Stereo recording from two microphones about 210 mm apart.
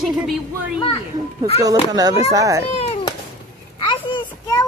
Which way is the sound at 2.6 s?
30° left (ahead or behind).